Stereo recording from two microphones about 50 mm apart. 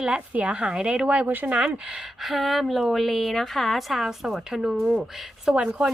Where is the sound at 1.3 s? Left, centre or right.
Right.